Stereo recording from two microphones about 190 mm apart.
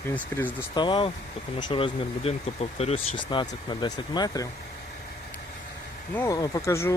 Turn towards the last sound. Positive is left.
turn(degrees=15)  # may be behind; listen again after turning